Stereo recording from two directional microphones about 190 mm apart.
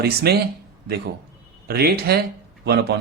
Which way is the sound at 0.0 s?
60° right (ahead or behind).